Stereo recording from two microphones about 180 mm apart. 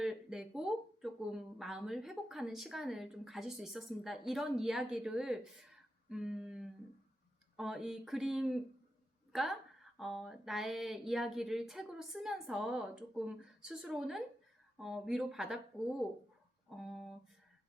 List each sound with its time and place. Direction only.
0.0 s speech: 5° right (ahead or behind)